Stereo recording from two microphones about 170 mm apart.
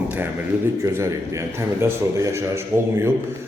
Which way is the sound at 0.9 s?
15° right (ahead or behind).